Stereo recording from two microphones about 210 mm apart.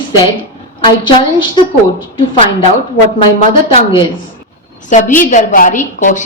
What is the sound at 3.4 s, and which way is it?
A woman's voice, 30° left (ahead or behind).